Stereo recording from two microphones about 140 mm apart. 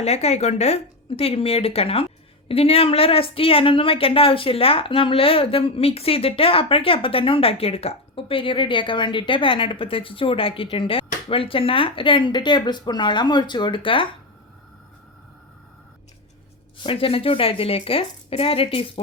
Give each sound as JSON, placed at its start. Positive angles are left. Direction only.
{"t": 0.0, "sound": "a woman's voice", "side_deg": 50}
{"t": 16.8, "sound": "speech", "side_deg": 40}